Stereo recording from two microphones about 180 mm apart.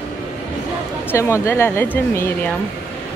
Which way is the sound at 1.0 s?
15° left (ahead or behind).